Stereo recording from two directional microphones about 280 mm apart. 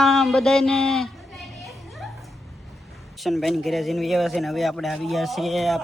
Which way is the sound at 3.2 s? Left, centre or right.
Centre.